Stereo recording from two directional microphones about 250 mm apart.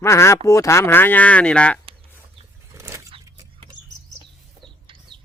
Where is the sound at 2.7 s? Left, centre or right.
Centre.